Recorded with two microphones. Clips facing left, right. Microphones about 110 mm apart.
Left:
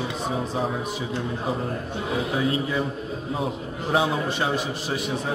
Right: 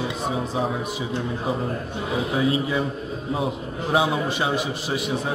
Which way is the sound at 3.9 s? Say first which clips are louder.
Right 1 dB; 5° right (ahead or behind).